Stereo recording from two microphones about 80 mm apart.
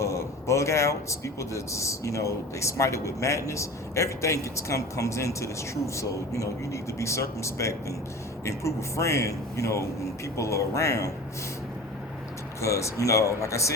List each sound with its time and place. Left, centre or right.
0.0 s speech: left
12.6 s speech: left